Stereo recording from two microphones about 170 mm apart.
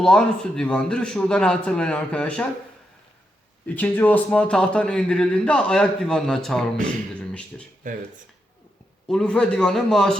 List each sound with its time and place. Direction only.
0.0 s a man's voice: 5° left (ahead or behind)
3.8 s a man's voice: 10° left (ahead or behind)
7.9 s speech: 50° right (ahead or behind)
9.0 s a man's voice: 5° left (ahead or behind)